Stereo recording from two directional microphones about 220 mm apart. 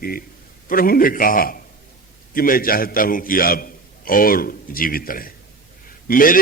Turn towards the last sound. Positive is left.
turn(degrees=40)  # may be behind; listen again after turning